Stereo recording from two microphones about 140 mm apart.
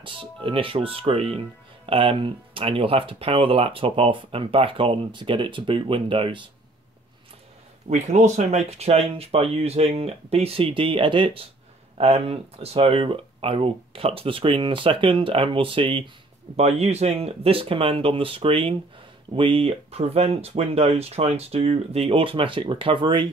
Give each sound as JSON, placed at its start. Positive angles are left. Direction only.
{"t": 0.0, "sound": "speech", "side_deg": -40}
{"t": 7.9, "sound": "speech", "side_deg": -55}
{"t": 16.5, "sound": "speech", "side_deg": -50}